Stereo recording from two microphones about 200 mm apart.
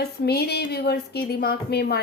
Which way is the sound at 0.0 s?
55° left (ahead or behind).